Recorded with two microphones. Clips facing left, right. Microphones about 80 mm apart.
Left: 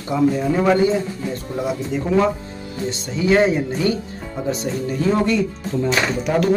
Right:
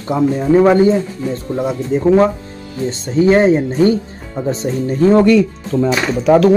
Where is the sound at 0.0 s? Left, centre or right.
Right.